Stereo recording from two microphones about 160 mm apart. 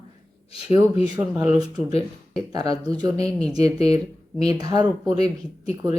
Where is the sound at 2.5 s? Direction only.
25° right (ahead or behind).